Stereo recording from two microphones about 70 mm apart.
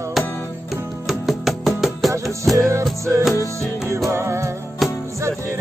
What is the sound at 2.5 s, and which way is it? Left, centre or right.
Music, right.